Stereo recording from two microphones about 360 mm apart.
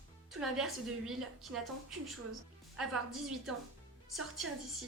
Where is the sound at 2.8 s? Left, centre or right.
Centre.